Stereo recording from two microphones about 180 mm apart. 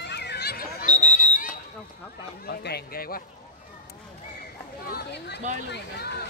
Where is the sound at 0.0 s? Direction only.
70° left (ahead or behind).